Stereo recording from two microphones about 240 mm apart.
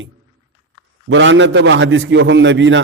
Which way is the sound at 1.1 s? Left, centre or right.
Right.